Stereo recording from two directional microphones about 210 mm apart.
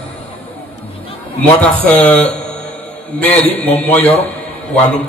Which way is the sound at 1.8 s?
5° left (ahead or behind).